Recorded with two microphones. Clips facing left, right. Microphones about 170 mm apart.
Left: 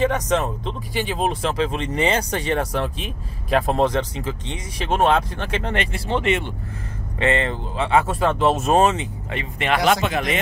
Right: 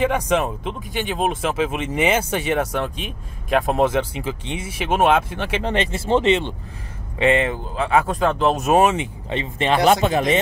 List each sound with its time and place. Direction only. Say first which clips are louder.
0.0 s speech: right 1 dB; 10° right (ahead or behind)
0.9 s speech: even; centre (ahead or behind)
5.6 s speech: right 3 dB; 20° right (ahead or behind)
7.2 s speech: right 3 dB; 10° right (ahead or behind)
7.7 s speech: left 1 dB; centre (ahead or behind)
8.7 s speech: right 1 dB; 10° right (ahead or behind)
9.3 s speech: right 3 dB; 30° right (ahead or behind)